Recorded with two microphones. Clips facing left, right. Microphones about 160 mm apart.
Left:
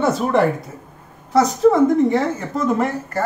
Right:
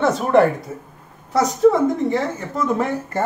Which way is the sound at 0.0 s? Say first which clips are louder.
Right 2 dB; centre (ahead or behind).